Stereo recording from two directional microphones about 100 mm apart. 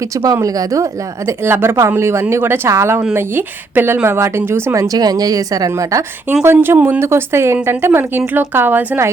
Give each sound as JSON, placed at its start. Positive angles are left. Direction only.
{"t": 0.4, "sound": "speech", "side_deg": -35}
{"t": 1.5, "sound": "a woman's voice", "side_deg": -25}
{"t": 6.4, "sound": "a woman's voice", "side_deg": -25}